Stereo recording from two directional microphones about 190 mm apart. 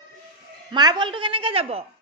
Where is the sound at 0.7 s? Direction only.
25° right (ahead or behind).